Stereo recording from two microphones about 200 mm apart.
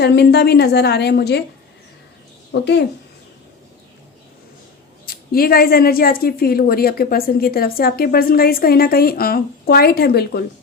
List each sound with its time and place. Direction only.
0.0 s a woman's voice: 55° left (ahead or behind)
2.5 s a woman's voice: 60° left (ahead or behind)
5.0 s a woman's voice: 50° left (ahead or behind)